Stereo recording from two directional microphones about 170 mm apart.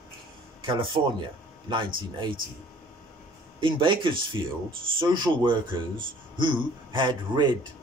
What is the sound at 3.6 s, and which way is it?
Speech, 30° right (ahead or behind).